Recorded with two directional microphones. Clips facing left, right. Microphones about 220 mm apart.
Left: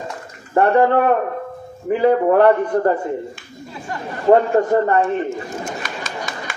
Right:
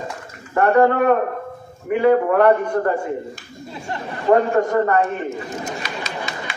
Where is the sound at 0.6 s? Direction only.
30° left (ahead or behind).